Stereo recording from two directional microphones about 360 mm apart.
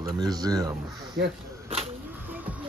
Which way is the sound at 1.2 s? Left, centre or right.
Right.